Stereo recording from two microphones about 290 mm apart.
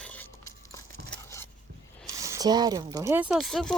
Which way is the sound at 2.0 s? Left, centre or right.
Centre.